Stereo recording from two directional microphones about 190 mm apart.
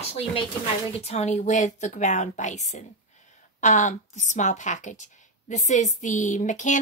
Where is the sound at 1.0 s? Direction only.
35° left (ahead or behind).